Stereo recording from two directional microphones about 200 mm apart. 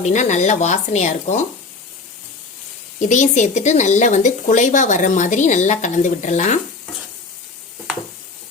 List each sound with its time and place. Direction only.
0.0 s speech: 35° left (ahead or behind)
3.0 s speech: 40° left (ahead or behind)